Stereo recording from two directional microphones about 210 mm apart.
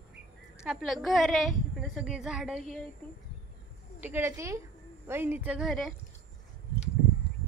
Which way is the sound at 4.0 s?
10° right (ahead or behind).